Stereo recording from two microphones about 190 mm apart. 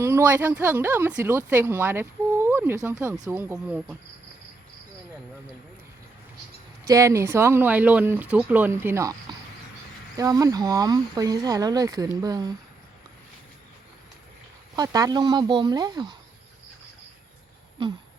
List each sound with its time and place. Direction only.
0.0 s speech: 15° right (ahead or behind)
6.8 s speech: 15° right (ahead or behind)
10.2 s speech: 20° right (ahead or behind)
14.8 s speech: 20° right (ahead or behind)
17.8 s speech: 25° right (ahead or behind)